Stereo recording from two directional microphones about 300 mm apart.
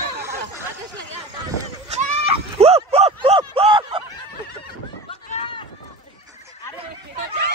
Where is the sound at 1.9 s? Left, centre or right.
Centre.